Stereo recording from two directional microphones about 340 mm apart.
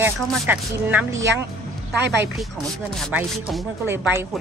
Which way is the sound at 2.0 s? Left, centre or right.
Right.